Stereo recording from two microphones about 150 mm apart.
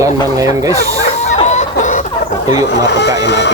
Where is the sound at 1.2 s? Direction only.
50° left (ahead or behind).